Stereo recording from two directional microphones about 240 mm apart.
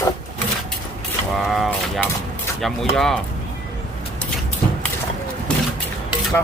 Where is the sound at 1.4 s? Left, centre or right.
Centre.